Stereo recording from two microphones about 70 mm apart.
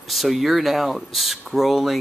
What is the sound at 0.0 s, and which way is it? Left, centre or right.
Speech, centre.